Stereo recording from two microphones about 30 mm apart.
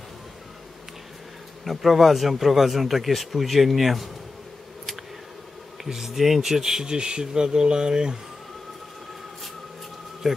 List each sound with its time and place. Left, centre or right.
1.6 s speech: centre
5.9 s speech: centre
10.2 s speech: centre